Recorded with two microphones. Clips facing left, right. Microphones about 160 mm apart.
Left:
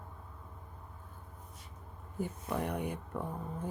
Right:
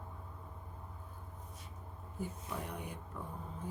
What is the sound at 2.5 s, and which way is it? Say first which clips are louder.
Speech: left 8 dB; 65° left (ahead or behind).